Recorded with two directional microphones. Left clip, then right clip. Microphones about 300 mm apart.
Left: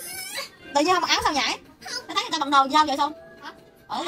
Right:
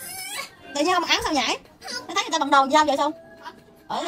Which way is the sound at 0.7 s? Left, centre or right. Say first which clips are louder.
Left 1 dB; centre.